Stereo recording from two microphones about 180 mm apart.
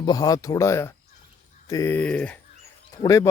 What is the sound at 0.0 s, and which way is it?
Speech, 20° left (ahead or behind).